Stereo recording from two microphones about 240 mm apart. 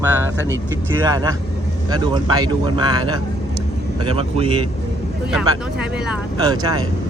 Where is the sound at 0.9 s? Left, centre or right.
Centre.